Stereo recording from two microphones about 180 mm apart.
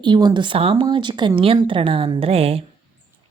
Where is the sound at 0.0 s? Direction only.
25° right (ahead or behind).